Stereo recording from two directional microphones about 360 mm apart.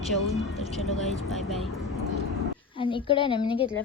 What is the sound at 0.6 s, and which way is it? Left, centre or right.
A woman's voice, centre.